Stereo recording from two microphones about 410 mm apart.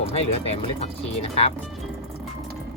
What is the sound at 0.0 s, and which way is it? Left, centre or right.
Speech, centre.